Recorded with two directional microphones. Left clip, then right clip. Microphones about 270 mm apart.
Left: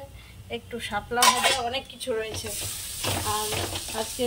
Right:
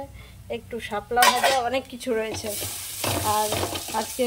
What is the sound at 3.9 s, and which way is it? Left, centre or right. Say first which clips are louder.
Speech: right 4 dB; centre.